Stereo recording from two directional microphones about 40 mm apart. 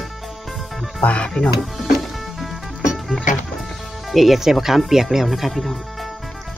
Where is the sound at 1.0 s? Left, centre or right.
Left.